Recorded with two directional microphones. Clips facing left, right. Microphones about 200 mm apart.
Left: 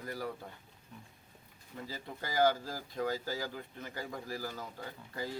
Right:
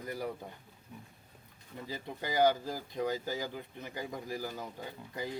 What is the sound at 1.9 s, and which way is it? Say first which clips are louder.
Speech: right 3 dB; 15° right (ahead or behind).